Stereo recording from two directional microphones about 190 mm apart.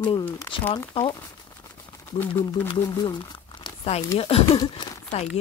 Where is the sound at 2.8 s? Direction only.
20° left (ahead or behind).